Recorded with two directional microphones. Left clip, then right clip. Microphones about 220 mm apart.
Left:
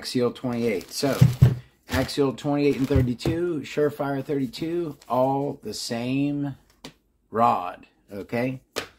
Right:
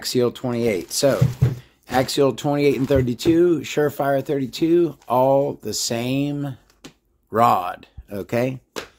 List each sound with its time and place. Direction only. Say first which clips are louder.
0.0 s speech: right 4 dB; 50° right (ahead or behind)